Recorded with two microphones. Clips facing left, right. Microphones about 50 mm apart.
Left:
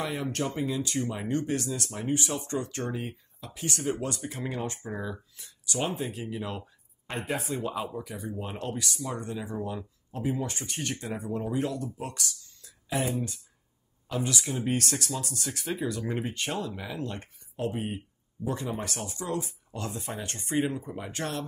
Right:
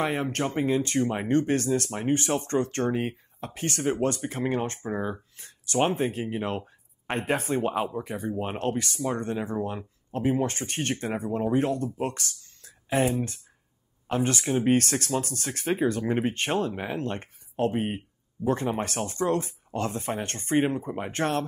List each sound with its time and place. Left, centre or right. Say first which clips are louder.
0.0 s speech: right 4 dB; right